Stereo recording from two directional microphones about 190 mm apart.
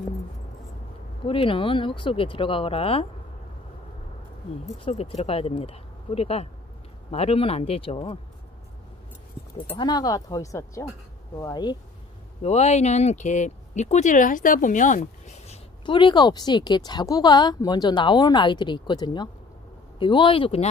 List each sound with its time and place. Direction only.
1.2 s speech: 30° left (ahead or behind)
4.7 s speech: 30° left (ahead or behind)
9.8 s speech: 20° left (ahead or behind)
12.4 s speech: 35° left (ahead or behind)